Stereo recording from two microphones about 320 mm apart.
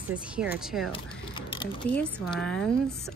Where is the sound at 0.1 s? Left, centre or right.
Centre.